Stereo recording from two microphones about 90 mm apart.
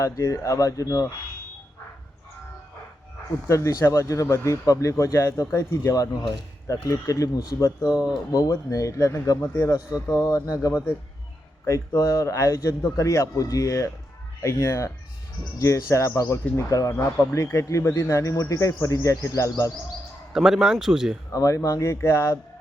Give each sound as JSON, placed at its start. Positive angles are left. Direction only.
{"t": 0.0, "sound": "a man's voice", "side_deg": 35}
{"t": 3.5, "sound": "a man's voice", "side_deg": 30}
{"t": 11.9, "sound": "a man's voice", "side_deg": 35}
{"t": 20.3, "sound": "a man's voice", "side_deg": -5}
{"t": 21.3, "sound": "a man's voice", "side_deg": 40}